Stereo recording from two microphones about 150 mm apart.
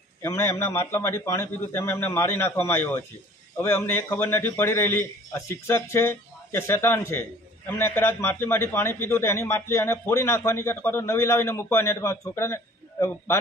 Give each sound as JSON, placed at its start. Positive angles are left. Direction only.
{"t": 0.2, "sound": "a man's voice", "side_deg": 20}